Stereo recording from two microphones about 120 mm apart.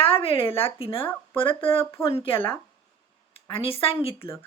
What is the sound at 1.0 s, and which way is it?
Speech, 15° left (ahead or behind).